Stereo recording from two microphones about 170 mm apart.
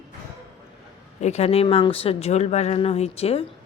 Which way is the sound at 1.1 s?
40° left (ahead or behind).